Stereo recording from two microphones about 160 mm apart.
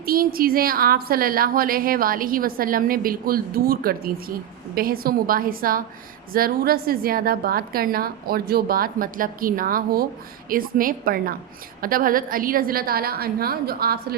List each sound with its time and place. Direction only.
0.0 s a woman's voice: 65° right (ahead or behind)